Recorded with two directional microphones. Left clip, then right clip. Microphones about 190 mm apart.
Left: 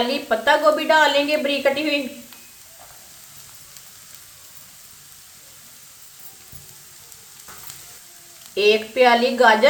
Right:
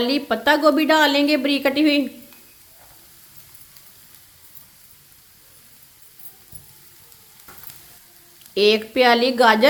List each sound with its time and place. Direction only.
0.1 s a woman's voice: 55° right (ahead or behind)
8.5 s a woman's voice: 55° right (ahead or behind)